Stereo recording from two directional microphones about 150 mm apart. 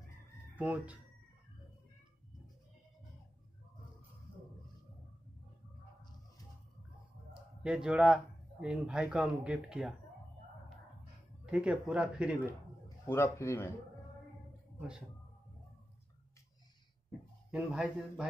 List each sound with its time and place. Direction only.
0.6 s speech: 10° right (ahead or behind)
7.6 s speech: 5° right (ahead or behind)
11.4 s speech: 5° right (ahead or behind)
12.8 s a man's voice: 15° left (ahead or behind)
14.8 s a man's voice: 5° right (ahead or behind)
17.5 s speech: 5° right (ahead or behind)